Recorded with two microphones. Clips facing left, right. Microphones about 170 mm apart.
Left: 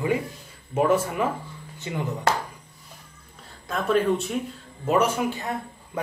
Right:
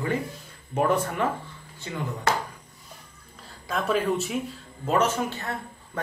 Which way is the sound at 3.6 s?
Centre (ahead or behind).